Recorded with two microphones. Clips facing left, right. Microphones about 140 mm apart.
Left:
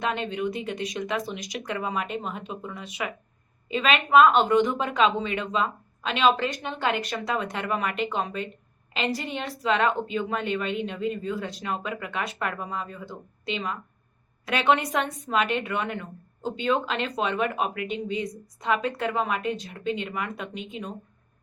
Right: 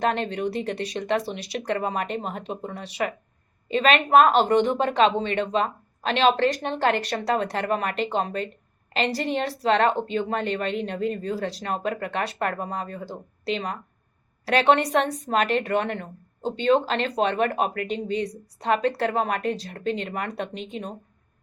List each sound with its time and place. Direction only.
0.0 s speech: 40° right (ahead or behind)
14.4 s speech: 35° right (ahead or behind)